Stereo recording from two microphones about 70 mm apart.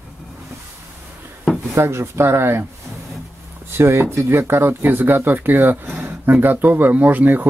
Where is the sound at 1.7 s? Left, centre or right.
Right.